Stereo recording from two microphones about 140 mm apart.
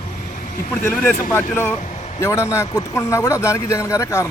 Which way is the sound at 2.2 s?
20° left (ahead or behind).